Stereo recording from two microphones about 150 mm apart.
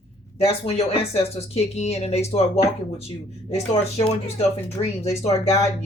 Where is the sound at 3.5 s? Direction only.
45° left (ahead or behind).